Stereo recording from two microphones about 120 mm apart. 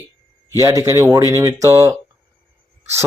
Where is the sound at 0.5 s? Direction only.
25° right (ahead or behind).